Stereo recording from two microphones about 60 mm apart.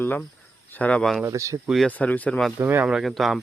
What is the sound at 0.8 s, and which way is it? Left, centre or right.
Speech, left.